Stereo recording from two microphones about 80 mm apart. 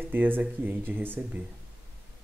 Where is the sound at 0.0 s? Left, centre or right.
Right.